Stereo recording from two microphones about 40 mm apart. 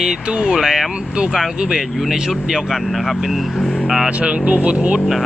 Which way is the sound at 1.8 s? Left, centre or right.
Centre.